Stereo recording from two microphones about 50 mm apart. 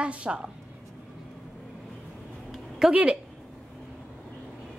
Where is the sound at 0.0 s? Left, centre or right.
Right.